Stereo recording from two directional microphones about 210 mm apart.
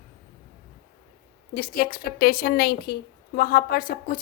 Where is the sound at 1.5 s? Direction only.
45° left (ahead or behind).